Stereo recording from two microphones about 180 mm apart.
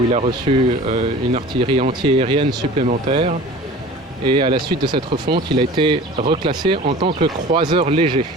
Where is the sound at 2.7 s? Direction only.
40° right (ahead or behind).